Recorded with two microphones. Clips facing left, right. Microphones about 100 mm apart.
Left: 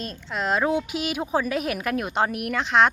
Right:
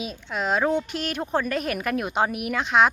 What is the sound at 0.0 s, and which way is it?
A woman's voice, centre (ahead or behind).